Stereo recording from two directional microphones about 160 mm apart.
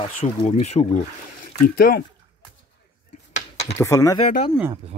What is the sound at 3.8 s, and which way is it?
Speech, 20° left (ahead or behind).